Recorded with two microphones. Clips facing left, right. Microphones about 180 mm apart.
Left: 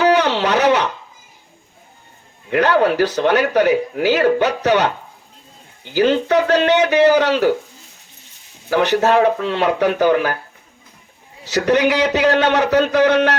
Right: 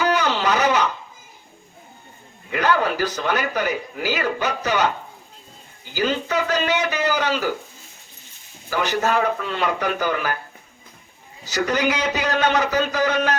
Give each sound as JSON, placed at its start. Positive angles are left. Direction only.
{"t": 0.0, "sound": "a sound", "side_deg": 70}
{"t": 2.8, "sound": "a man's voice", "side_deg": 70}
{"t": 5.9, "sound": "a man's voice", "side_deg": 70}
{"t": 8.7, "sound": "a man's voice", "side_deg": 70}
{"t": 11.4, "sound": "a man's voice", "side_deg": 70}